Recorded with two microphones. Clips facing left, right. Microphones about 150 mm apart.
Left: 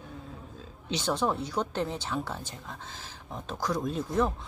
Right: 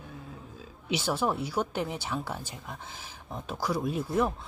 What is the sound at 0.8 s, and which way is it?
Speech, 10° right (ahead or behind).